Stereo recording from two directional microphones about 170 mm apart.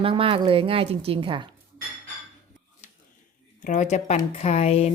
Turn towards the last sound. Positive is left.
turn(degrees=35)  # may be behind; listen again after turning